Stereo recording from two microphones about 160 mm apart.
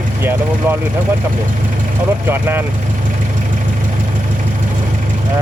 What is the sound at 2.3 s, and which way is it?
Speech, 15° right (ahead or behind).